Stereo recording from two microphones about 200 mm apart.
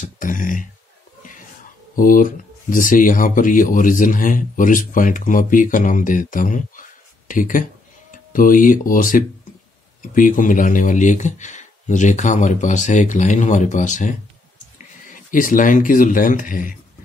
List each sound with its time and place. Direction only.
0.0 s speech: 40° left (ahead or behind)
2.0 s speech: 45° left (ahead or behind)